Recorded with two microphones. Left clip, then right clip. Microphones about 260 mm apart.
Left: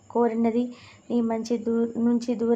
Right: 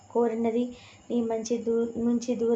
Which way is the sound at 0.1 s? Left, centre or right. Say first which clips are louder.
Left 2 dB; left.